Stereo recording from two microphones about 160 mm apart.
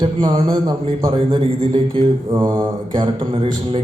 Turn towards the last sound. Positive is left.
turn(degrees=-35)  # may be behind; listen again after turning